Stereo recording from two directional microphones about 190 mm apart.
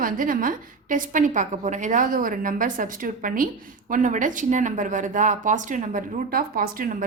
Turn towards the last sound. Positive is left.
turn(degrees=-50)  # may be behind; listen again after turning